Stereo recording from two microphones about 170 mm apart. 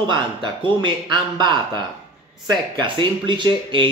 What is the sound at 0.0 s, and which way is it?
A man's voice, 30° right (ahead or behind).